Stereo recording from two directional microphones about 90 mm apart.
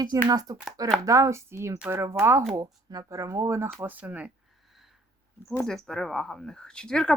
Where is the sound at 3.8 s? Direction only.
20° right (ahead or behind).